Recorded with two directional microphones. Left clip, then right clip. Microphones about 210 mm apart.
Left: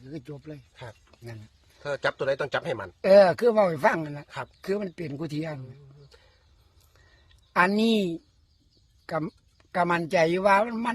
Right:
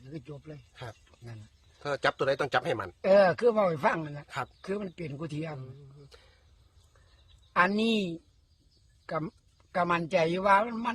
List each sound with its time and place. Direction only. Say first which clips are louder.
0.1 s speech: left 4 dB; 45° left (ahead or behind)
1.8 s speech: left 1 dB; 15° right (ahead or behind)
3.0 s speech: left 5 dB; 50° left (ahead or behind)
7.5 s speech: left 3 dB; 50° left (ahead or behind)